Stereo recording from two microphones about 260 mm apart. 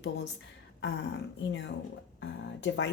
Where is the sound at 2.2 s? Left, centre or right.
Left.